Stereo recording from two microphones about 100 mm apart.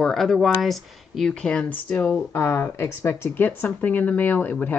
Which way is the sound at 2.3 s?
25° left (ahead or behind).